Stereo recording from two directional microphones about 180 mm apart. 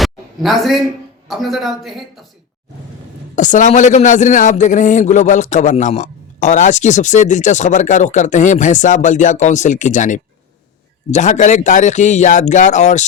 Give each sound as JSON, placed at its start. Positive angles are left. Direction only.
{"t": 0.0, "sound": "a sound", "side_deg": 0}
{"t": 1.3, "sound": "speech", "side_deg": 0}
{"t": 3.3, "sound": "a man's voice", "side_deg": 45}